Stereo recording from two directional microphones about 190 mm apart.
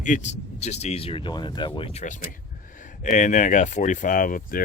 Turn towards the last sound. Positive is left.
turn(degrees=45)  # may be behind; listen again after turning